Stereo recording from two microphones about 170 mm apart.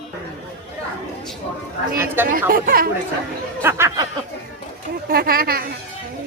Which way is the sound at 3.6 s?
15° right (ahead or behind).